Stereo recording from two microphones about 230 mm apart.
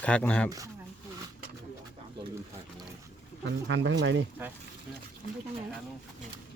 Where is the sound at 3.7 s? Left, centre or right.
Right.